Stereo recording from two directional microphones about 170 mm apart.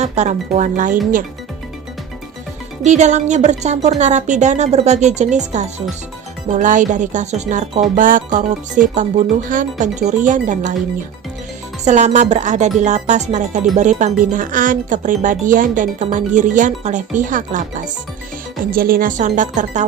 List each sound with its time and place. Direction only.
0.0 s speech: 40° right (ahead or behind)
2.8 s speech: 45° right (ahead or behind)
11.9 s speech: 45° right (ahead or behind)